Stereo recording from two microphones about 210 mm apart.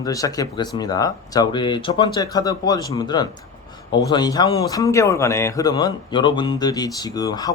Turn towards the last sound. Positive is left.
turn(degrees=15)  # may be behind; listen again after turning